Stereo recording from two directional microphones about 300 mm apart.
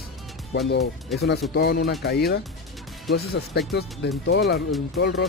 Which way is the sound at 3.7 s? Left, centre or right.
Left.